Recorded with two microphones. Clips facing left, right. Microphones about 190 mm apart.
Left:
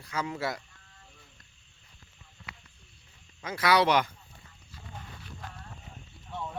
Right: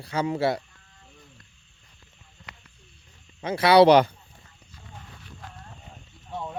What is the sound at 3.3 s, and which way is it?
Speech, 30° right (ahead or behind).